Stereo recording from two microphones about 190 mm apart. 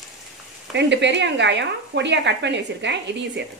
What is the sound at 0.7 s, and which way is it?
Speech, 70° right (ahead or behind).